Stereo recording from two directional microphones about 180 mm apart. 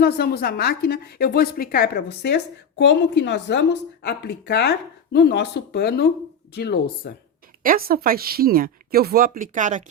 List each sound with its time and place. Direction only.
0.0 s a woman's voice: 60° left (ahead or behind)
7.6 s speech: 55° right (ahead or behind)